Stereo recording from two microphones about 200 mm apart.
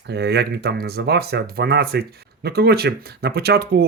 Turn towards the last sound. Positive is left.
turn(degrees=-55)  # may be behind; listen again after turning